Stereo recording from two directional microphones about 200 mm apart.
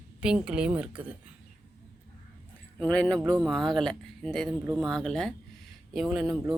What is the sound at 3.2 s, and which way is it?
Speech, 15° right (ahead or behind).